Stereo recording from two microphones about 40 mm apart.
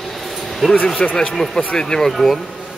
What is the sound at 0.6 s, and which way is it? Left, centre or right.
Speech, centre.